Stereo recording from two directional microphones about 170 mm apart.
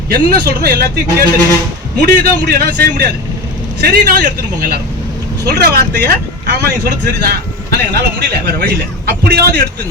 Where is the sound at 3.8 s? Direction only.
60° right (ahead or behind).